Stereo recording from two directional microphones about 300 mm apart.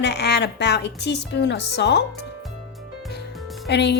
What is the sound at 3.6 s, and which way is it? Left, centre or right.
Speech, left.